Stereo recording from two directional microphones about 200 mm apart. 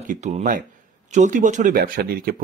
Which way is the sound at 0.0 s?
40° right (ahead or behind).